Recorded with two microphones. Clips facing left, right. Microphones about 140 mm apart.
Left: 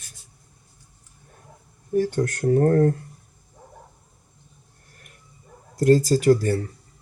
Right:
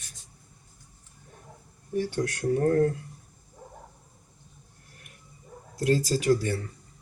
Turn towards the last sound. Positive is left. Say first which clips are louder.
# left 6 dB
turn(degrees=45)  # may be behind; listen again after turning